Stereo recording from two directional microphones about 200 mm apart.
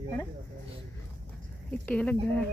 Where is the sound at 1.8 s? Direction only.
5° left (ahead or behind).